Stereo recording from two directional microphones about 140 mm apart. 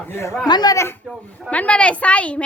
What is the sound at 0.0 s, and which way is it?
Speech, 20° left (ahead or behind).